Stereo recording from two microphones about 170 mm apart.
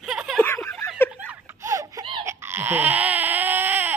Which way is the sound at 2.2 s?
15° right (ahead or behind).